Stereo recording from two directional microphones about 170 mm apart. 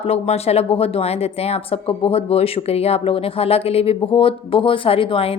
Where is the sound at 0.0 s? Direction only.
35° left (ahead or behind).